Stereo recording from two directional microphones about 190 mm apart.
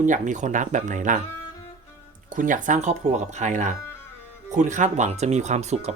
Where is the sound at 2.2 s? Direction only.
45° right (ahead or behind).